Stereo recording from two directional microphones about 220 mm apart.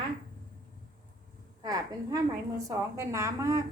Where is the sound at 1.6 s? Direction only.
15° right (ahead or behind).